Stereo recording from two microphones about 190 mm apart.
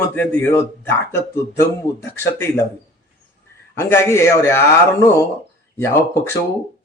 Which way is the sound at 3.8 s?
15° left (ahead or behind).